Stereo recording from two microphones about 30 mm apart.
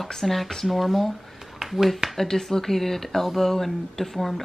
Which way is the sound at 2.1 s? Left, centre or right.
Centre.